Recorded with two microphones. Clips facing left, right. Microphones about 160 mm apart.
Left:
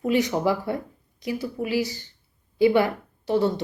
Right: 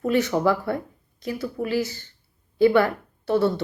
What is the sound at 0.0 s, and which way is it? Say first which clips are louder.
Speech: right 1 dB; 15° left (ahead or behind).